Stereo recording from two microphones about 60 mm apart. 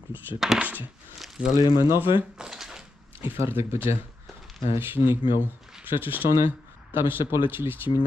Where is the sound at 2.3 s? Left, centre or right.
Centre.